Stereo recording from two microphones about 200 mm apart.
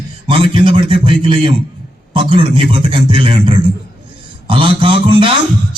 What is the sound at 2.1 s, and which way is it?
A man's voice, 25° right (ahead or behind).